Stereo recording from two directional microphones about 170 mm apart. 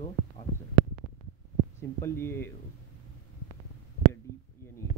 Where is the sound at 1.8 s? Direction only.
15° left (ahead or behind).